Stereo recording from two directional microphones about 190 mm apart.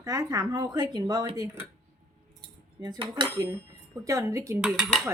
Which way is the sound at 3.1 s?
20° right (ahead or behind).